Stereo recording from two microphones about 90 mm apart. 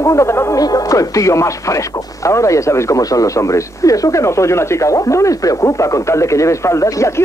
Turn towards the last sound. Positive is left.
turn(degrees=35)  # may be behind; listen again after turning